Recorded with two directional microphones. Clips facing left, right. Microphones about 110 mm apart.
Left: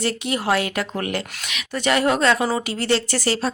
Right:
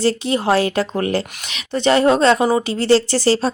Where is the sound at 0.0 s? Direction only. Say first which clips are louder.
Right 6 dB; 30° right (ahead or behind).